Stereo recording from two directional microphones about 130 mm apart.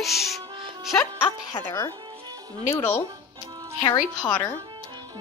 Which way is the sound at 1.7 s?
15° left (ahead or behind).